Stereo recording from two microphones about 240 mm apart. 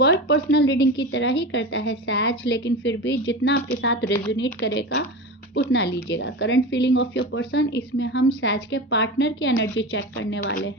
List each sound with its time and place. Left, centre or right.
0.0 s a woman's voice: left